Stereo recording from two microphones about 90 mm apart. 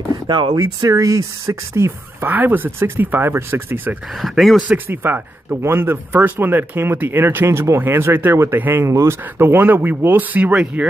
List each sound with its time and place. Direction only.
0.1 s speech: 60° right (ahead or behind)
0.8 s speech: 40° right (ahead or behind); by 3.9 s 20° right (ahead or behind)
4.2 s speech: centre (ahead or behind)
4.7 s speech: 20° right (ahead or behind)